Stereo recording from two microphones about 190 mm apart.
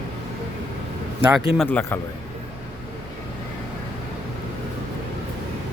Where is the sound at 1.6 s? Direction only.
10° left (ahead or behind).